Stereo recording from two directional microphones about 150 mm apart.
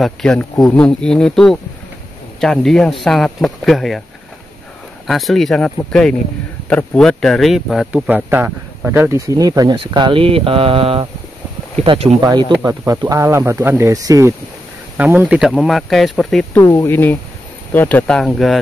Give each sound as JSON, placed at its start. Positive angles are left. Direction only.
{"t": 0.0, "sound": "speech", "side_deg": 5}
{"t": 5.0, "sound": "speech", "side_deg": 0}
{"t": 7.0, "sound": "speech", "side_deg": 5}
{"t": 7.9, "sound": "speech", "side_deg": -10}
{"t": 12.2, "sound": "speech", "side_deg": -30}
{"t": 15.0, "sound": "speech", "side_deg": -10}
{"t": 16.7, "sound": "speech", "side_deg": 15}